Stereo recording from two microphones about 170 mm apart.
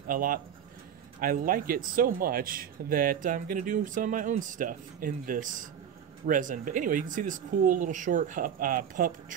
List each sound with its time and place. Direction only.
0.1 s speech: 55° right (ahead or behind)